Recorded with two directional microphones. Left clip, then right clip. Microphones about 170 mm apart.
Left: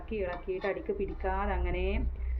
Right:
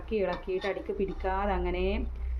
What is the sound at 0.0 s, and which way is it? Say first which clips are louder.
Speech: right 5 dB; 30° right (ahead or behind).